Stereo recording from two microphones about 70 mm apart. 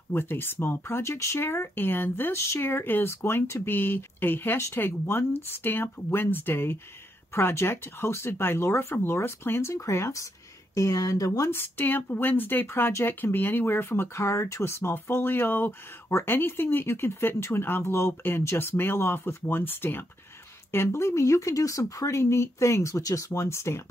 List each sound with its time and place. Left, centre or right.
0.1 s speech: left
10.7 s speech: left
11.5 s speech: left